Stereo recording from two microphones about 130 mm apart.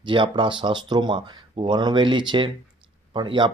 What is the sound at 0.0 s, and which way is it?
Speech, 40° right (ahead or behind).